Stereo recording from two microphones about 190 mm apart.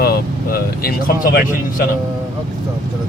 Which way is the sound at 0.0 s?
55° left (ahead or behind).